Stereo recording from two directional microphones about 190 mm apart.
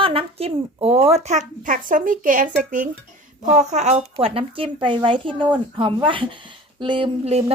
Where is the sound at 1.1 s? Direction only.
35° right (ahead or behind).